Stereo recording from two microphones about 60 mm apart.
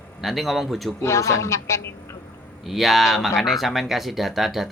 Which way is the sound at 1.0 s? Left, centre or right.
Left.